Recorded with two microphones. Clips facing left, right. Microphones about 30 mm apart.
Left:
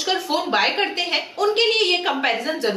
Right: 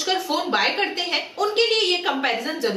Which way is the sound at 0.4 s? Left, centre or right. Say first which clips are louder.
Left 1 dB; centre.